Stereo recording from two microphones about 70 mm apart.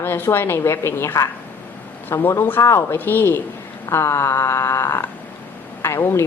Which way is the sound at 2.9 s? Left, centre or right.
Left.